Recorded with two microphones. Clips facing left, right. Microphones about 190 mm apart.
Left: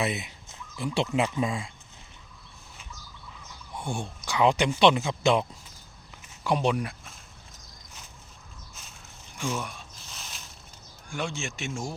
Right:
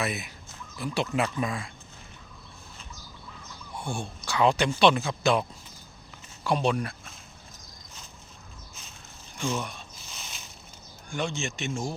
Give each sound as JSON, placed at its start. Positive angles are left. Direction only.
{"t": 0.0, "sound": "speech", "side_deg": 25}
{"t": 3.8, "sound": "speech", "side_deg": 20}
{"t": 9.4, "sound": "a sound", "side_deg": 5}
{"t": 11.1, "sound": "speech", "side_deg": 5}